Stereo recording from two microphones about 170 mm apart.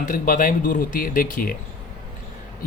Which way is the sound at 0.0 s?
55° left (ahead or behind).